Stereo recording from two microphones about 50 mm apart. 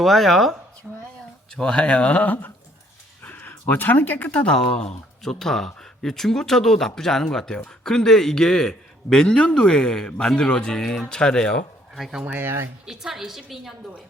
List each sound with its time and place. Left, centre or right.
0.0 s speech: centre
0.9 s a sound: centre
1.5 s speech: centre
5.2 s speech: centre
12.2 s speech: right
12.8 s a woman's voice: centre